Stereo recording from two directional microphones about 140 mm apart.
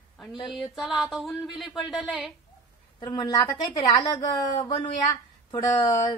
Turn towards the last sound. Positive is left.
turn(degrees=30)  # may be behind; listen again after turning